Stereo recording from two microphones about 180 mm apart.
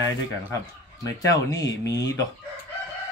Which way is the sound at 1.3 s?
20° left (ahead or behind).